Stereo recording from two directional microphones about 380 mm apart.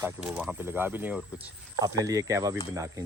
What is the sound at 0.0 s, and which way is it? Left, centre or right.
Speech, centre.